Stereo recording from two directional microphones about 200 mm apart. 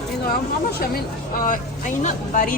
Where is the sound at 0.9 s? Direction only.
45° left (ahead or behind).